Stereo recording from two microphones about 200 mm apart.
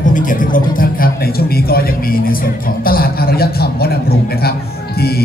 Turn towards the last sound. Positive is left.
turn(degrees=50)  # may be behind; listen again after turning